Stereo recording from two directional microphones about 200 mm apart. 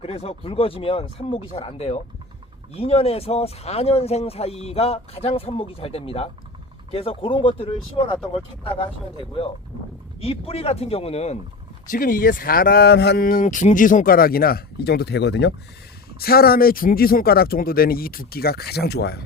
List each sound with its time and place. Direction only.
0.0 s speech: 30° left (ahead or behind)
9.1 s speech: 25° left (ahead or behind)
11.9 s speech: 45° left (ahead or behind)